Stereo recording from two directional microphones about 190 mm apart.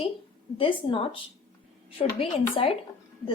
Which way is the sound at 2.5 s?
30° left (ahead or behind).